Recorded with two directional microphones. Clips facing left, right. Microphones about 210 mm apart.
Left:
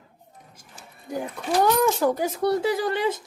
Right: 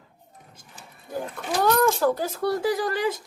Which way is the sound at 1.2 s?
15° left (ahead or behind).